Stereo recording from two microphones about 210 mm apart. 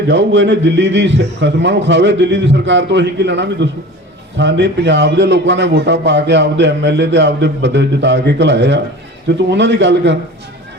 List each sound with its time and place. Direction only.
0.1 s a man's voice: 55° right (ahead or behind)